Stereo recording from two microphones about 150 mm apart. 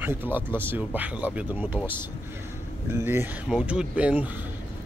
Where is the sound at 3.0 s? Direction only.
15° right (ahead or behind).